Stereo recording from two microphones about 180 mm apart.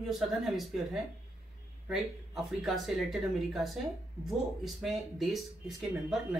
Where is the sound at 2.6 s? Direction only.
Centre (ahead or behind).